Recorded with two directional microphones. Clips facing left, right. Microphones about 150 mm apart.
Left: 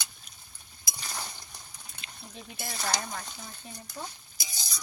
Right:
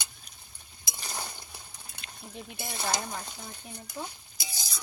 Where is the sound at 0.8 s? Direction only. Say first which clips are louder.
Right 1 dB; 25° right (ahead or behind).